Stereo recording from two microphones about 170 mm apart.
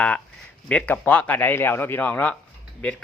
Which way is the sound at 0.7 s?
10° left (ahead or behind).